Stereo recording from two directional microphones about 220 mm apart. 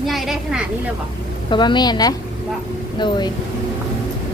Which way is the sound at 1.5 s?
20° left (ahead or behind).